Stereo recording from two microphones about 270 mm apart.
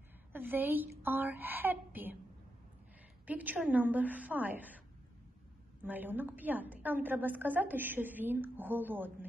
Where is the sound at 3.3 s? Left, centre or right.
Centre.